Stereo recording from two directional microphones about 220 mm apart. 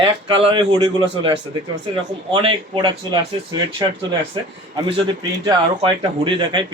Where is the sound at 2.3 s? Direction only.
25° right (ahead or behind).